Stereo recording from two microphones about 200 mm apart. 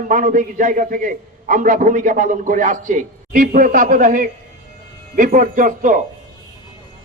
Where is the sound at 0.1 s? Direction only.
40° right (ahead or behind).